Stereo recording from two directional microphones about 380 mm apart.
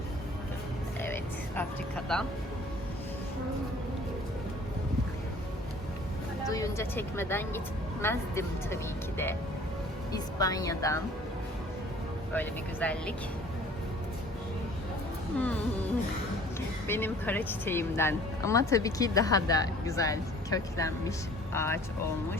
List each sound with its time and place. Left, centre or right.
1.0 s a sound: centre
6.5 s speech: centre
12.3 s speech: centre
15.4 s speech: centre